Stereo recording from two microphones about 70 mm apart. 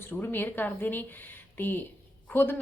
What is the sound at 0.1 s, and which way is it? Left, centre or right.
A woman's voice, left.